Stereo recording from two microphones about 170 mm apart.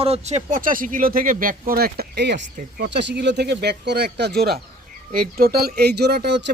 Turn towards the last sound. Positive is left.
turn(degrees=-80)